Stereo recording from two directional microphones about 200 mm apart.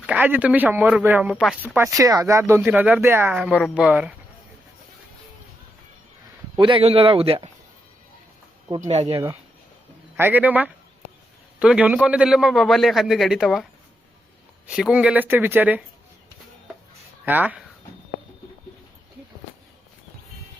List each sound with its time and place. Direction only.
0.0 s speech: 10° right (ahead or behind)
6.6 s speech: 25° right (ahead or behind)
8.7 s speech: 35° right (ahead or behind)
10.2 s a man's voice: 10° right (ahead or behind)
14.7 s speech: 5° right (ahead or behind)
17.2 s speech: 10° right (ahead or behind)